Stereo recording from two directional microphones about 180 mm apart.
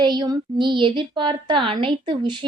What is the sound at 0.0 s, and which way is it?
A woman's voice, 25° right (ahead or behind).